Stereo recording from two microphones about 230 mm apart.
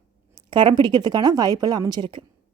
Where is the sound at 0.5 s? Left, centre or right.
Right.